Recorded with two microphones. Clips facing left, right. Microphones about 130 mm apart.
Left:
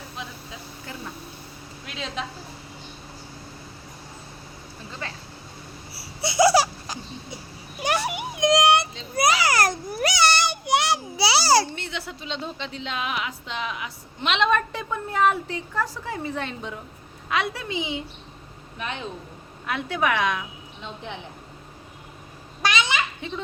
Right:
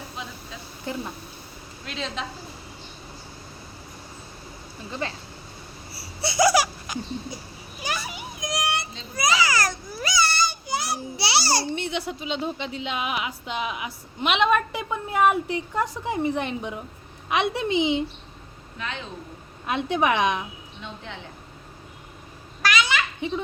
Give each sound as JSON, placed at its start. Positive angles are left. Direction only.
{"t": 0.9, "sound": "a woman's voice", "side_deg": -20}
{"t": 1.9, "sound": "a woman's voice", "side_deg": 10}
{"t": 4.9, "sound": "a woman's voice", "side_deg": -25}
{"t": 6.2, "sound": "laughter", "side_deg": 25}
{"t": 7.8, "sound": "baby cry", "side_deg": 65}
{"t": 11.7, "sound": "a woman's voice", "side_deg": -15}
{"t": 18.8, "sound": "speech", "side_deg": 20}
{"t": 19.6, "sound": "a woman's voice", "side_deg": -20}
{"t": 20.8, "sound": "a woman's voice", "side_deg": 20}
{"t": 22.6, "sound": "babbling", "side_deg": 20}